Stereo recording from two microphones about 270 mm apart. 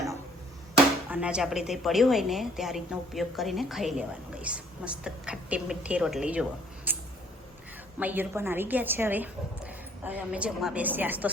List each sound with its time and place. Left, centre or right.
1.1 s a woman's voice: centre
6.9 s a sound: centre
7.9 s a woman's voice: centre